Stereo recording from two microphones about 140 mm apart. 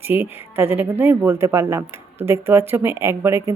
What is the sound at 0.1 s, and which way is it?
Speech, 15° right (ahead or behind).